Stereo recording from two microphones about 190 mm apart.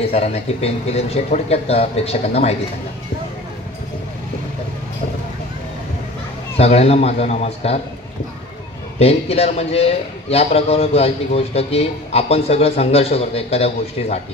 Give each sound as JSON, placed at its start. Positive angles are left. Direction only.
{"t": 0.0, "sound": "a man's voice", "side_deg": 35}
{"t": 6.6, "sound": "a man's voice", "side_deg": 35}
{"t": 9.0, "sound": "a man's voice", "side_deg": 35}